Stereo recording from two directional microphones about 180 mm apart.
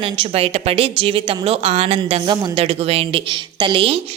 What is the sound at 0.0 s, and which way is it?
Speech, 30° right (ahead or behind).